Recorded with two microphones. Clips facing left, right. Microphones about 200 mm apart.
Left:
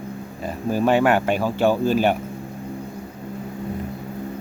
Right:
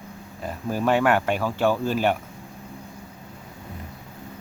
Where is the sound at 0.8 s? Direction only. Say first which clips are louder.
Left 3 dB; 30° left (ahead or behind).